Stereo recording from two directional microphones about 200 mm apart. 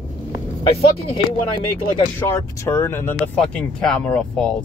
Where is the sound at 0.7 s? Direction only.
30° left (ahead or behind).